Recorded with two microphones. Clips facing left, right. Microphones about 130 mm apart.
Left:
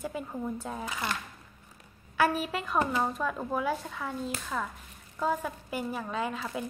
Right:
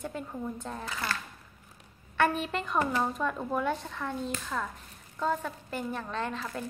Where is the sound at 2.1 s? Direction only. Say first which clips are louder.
Even; 5° left (ahead or behind).